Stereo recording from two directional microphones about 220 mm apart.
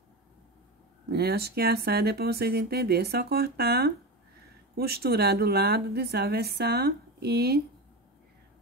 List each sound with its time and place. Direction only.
1.1 s a woman's voice: 45° right (ahead or behind)